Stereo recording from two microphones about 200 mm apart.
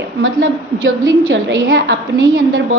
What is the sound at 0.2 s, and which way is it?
A woman's voice, 70° right (ahead or behind).